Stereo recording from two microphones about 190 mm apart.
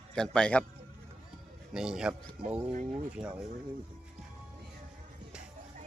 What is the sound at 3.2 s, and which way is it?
Speech, 5° right (ahead or behind).